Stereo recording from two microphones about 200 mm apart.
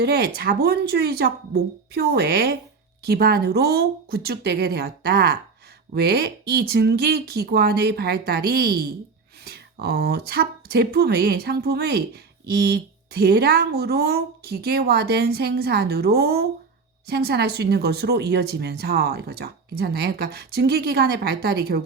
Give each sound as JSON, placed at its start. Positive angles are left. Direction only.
{"t": 0.0, "sound": "speech", "side_deg": -50}